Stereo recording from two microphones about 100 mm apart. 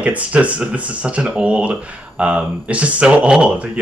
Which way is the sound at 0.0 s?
15° right (ahead or behind).